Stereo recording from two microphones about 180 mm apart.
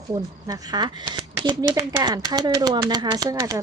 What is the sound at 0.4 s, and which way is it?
A woman's voice, 20° right (ahead or behind).